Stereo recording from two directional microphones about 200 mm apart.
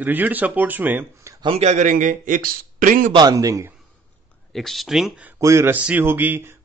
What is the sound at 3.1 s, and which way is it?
Speech, 20° right (ahead or behind).